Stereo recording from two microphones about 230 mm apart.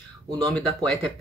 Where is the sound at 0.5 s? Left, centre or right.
Centre.